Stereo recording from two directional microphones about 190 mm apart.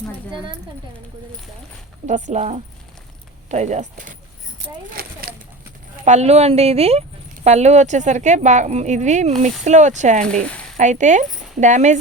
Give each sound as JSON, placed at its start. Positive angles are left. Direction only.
{"t": 2.0, "sound": "speech", "side_deg": -40}
{"t": 5.0, "sound": "a sound", "side_deg": -55}
{"t": 6.1, "sound": "speech", "side_deg": -35}
{"t": 10.2, "sound": "speech", "side_deg": 5}
{"t": 10.8, "sound": "speech", "side_deg": -40}